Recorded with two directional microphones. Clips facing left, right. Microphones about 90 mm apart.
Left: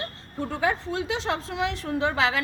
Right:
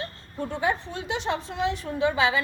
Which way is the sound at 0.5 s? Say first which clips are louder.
Left 2 dB; 90° left.